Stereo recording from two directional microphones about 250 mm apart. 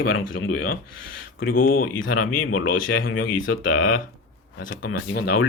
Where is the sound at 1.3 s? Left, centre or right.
Left.